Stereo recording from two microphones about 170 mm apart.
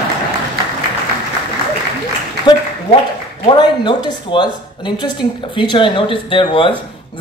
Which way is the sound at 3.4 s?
25° left (ahead or behind).